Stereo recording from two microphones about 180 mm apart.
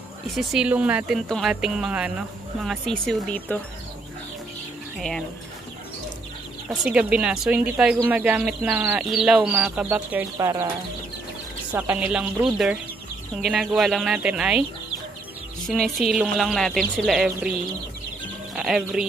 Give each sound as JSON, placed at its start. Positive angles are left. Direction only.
{"t": 0.4, "sound": "speech", "side_deg": -5}
{"t": 6.7, "sound": "speech", "side_deg": -5}
{"t": 10.3, "sound": "speech", "side_deg": -20}
{"t": 11.7, "sound": "speech", "side_deg": -10}
{"t": 16.1, "sound": "speech", "side_deg": 0}
{"t": 18.5, "sound": "speech", "side_deg": -5}